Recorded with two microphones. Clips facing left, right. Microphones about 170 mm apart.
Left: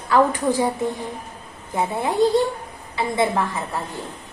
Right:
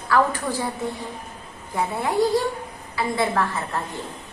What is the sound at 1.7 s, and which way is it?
A woman's voice, 25° left (ahead or behind).